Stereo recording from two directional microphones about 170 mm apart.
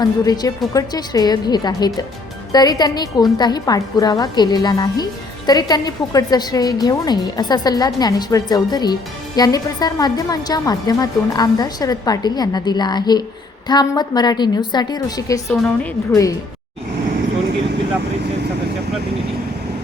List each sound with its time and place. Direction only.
0.0 s a woman's voice: 20° left (ahead or behind)